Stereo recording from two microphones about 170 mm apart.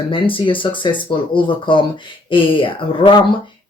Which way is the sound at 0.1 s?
30° left (ahead or behind).